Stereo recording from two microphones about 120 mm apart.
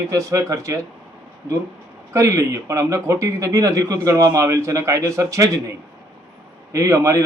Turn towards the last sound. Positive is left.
turn(degrees=-25)  # may be behind; listen again after turning